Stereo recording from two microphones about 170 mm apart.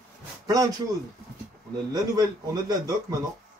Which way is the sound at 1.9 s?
20° right (ahead or behind).